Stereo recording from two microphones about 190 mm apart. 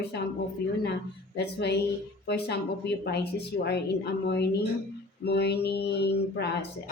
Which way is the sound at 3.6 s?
60° left (ahead or behind).